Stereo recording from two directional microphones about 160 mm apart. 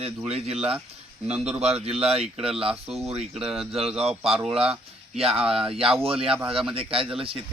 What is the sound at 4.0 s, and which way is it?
Speech, 40° right (ahead or behind).